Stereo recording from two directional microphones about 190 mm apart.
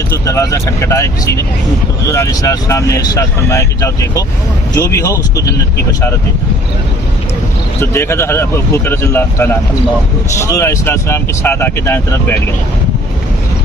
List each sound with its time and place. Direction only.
0.1 s speech: 15° left (ahead or behind)
7.8 s speech: 15° left (ahead or behind)